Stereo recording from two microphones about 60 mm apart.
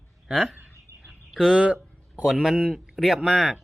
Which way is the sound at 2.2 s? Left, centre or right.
Centre.